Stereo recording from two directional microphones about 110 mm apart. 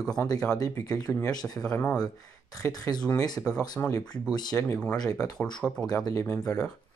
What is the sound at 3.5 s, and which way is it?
Speech, 10° left (ahead or behind).